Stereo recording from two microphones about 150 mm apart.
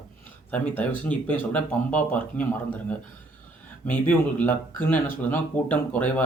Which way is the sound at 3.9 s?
10° left (ahead or behind).